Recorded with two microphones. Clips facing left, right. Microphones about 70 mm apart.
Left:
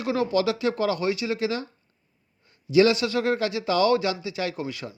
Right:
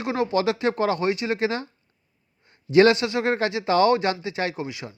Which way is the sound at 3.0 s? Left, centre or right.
Right.